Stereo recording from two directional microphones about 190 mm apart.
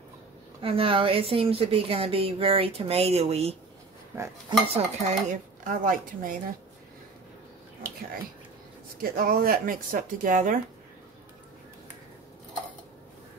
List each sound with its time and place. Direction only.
0.6 s a woman's voice: 30° right (ahead or behind)
4.1 s dishes: 10° right (ahead or behind)
4.5 s dishes: 35° right (ahead or behind)
9.0 s dishes: 50° right (ahead or behind)